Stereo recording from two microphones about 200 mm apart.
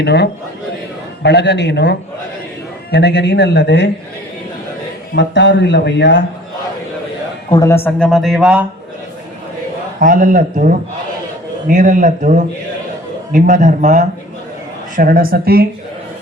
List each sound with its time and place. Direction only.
0.0 s speech: 55° left (ahead or behind)
5.1 s speech: 65° left (ahead or behind)
7.5 s speech: 15° left (ahead or behind); by 8.6 s 5° right (ahead or behind)
10.0 s speech: 40° right (ahead or behind)